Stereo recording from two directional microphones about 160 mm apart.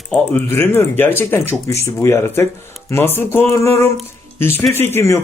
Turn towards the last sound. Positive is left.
turn(degrees=15)  # may be behind; listen again after turning